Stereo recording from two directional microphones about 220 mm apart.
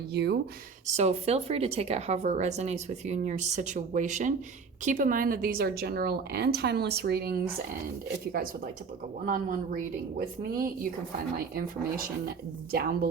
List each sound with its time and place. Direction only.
0.1 s a woman's voice: 50° right (ahead or behind)
0.9 s a woman's voice: 30° right (ahead or behind)